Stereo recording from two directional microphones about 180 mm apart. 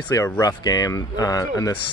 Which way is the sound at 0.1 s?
20° left (ahead or behind).